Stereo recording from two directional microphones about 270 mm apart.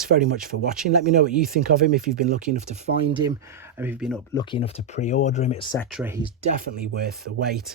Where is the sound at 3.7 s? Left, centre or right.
Centre.